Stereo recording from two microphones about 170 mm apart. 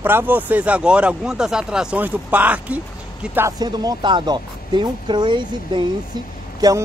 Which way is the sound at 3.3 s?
20° right (ahead or behind).